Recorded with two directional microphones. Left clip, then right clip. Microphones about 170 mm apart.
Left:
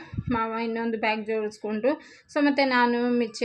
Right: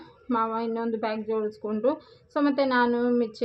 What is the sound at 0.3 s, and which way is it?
A woman's voice, 15° left (ahead or behind).